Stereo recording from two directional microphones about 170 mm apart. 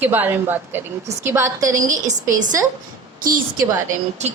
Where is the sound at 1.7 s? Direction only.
45° right (ahead or behind).